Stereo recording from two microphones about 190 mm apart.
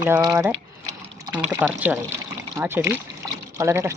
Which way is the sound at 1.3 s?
10° right (ahead or behind).